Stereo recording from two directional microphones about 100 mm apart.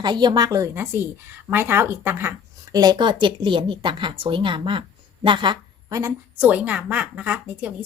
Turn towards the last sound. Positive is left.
turn(degrees=-15)  # may be behind; listen again after turning